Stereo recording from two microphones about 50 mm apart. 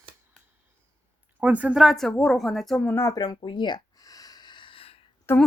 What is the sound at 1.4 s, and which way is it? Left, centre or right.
Speech, right.